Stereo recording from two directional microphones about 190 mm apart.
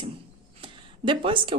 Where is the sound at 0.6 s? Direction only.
25° right (ahead or behind).